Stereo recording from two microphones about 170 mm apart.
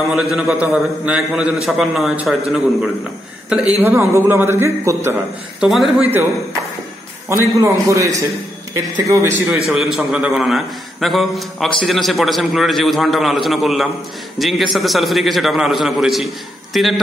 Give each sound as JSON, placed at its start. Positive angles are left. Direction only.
{"t": 0.1, "sound": "a man's voice", "side_deg": -5}
{"t": 5.6, "sound": "a man's voice", "side_deg": 0}
{"t": 7.2, "sound": "a man's voice", "side_deg": -15}
{"t": 9.7, "sound": "a man's voice", "side_deg": 0}